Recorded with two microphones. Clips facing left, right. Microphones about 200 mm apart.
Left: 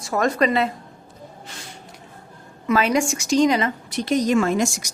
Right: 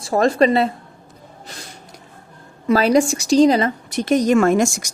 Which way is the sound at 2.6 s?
35° right (ahead or behind).